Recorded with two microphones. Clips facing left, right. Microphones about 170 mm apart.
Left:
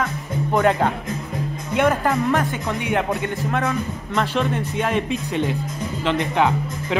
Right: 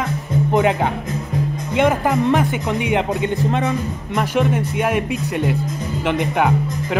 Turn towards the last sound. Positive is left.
turn(degrees=-15)  # may be behind; listen again after turning